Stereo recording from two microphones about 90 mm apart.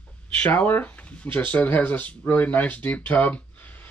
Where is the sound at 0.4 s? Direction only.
20° left (ahead or behind).